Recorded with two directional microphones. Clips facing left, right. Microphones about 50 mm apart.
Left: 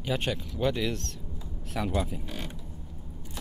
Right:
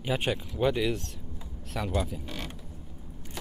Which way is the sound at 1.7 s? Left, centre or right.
Centre.